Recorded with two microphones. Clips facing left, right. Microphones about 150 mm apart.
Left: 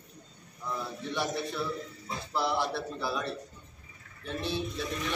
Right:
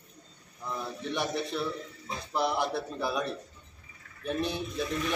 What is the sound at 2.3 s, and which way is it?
A man's voice, 20° right (ahead or behind).